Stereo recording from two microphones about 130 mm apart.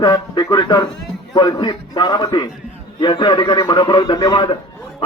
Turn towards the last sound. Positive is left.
turn(degrees=35)  # may be behind; listen again after turning